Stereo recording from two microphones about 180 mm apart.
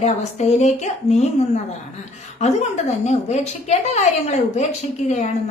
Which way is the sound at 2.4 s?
40° left (ahead or behind).